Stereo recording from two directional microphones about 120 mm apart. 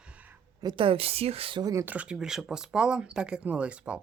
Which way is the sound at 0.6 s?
35° right (ahead or behind).